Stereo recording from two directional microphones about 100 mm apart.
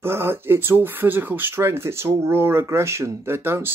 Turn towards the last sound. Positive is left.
turn(degrees=-25)  # may be behind; listen again after turning